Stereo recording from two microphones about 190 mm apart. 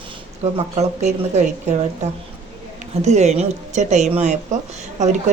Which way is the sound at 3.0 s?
35° right (ahead or behind).